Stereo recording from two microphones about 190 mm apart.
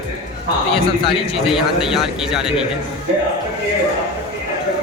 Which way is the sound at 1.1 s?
Centre (ahead or behind).